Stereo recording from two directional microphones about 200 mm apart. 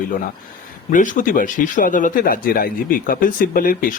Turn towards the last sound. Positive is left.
turn(degrees=45)  # may be behind; listen again after turning